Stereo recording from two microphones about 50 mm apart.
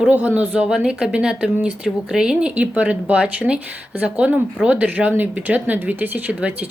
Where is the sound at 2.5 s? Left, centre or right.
Right.